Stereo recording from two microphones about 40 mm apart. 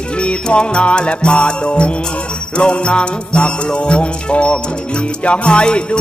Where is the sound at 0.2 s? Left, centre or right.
Left.